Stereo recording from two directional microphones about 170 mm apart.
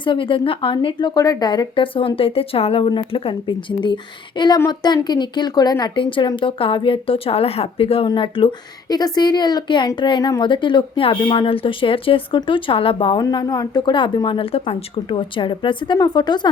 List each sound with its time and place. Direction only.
0.0 s a woman's voice: 30° left (ahead or behind)